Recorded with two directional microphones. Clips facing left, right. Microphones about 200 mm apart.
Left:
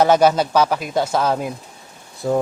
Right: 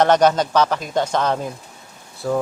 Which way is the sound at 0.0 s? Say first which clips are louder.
Left 1 dB; 10° left (ahead or behind).